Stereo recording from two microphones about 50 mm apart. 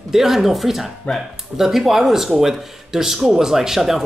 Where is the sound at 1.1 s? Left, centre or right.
Left.